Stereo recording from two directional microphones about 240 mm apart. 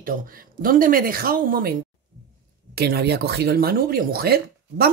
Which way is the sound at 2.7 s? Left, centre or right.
Right.